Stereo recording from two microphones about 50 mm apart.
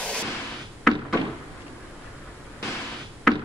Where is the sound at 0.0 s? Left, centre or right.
Centre.